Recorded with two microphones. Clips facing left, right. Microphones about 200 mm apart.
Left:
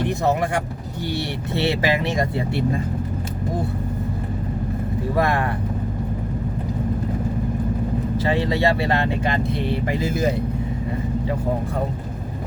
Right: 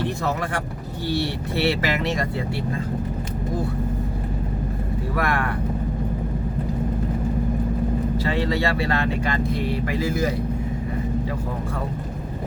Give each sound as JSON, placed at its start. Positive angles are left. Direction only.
{"t": 0.0, "sound": "speech", "side_deg": 20}
{"t": 5.1, "sound": "speech", "side_deg": 20}
{"t": 8.2, "sound": "speech", "side_deg": 20}